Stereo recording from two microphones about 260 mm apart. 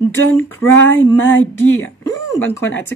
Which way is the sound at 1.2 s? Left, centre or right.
Left.